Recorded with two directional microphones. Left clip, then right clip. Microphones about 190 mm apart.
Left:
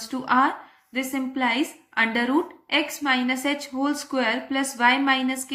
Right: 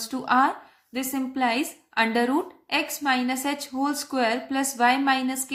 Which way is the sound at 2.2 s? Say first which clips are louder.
Left 1 dB; 30° right (ahead or behind).